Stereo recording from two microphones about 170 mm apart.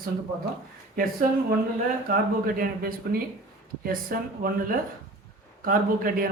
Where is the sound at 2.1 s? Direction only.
60° right (ahead or behind).